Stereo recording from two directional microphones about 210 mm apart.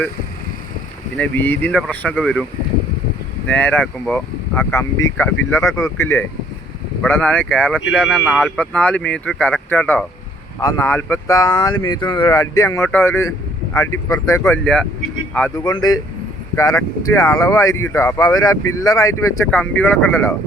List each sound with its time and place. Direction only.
1.1 s speech: 10° left (ahead or behind)
3.5 s speech: 10° left (ahead or behind)
7.9 s speech: 5° right (ahead or behind)
8.4 s speech: 5° left (ahead or behind)
15.5 s speech: 20° left (ahead or behind)